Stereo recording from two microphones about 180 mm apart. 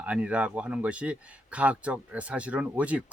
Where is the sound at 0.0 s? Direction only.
5° right (ahead or behind).